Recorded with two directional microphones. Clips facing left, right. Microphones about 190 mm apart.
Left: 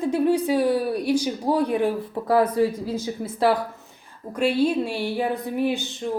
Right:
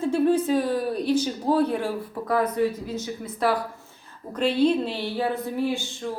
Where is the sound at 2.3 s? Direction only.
30° left (ahead or behind).